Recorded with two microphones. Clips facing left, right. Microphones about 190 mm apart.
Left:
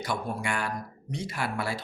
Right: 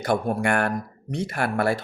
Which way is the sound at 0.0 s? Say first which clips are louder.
Right 9 dB; 55° right (ahead or behind).